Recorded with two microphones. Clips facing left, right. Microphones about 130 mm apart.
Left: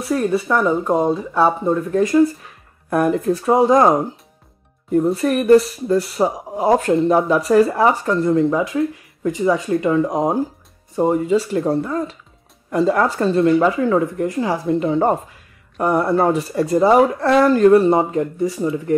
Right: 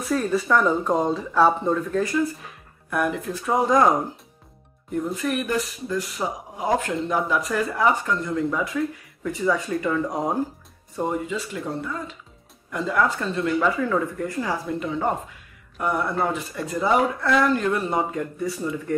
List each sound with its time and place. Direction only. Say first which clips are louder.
0.6 s speech: left 5 dB; 10° left (ahead or behind)
1.9 s speech: left 6 dB; 20° left (ahead or behind)
2.9 s speech: left 8 dB; 35° left (ahead or behind)
4.9 s speech: left 9 dB; 35° left (ahead or behind)
11.0 s speech: left 10 dB; 35° left (ahead or behind)